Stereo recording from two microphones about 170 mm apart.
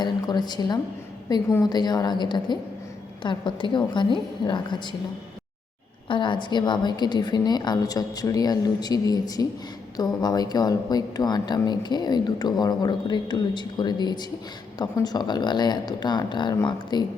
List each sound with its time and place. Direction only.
0.0 s a woman's voice: 25° left (ahead or behind)
6.1 s a woman's voice: 30° left (ahead or behind)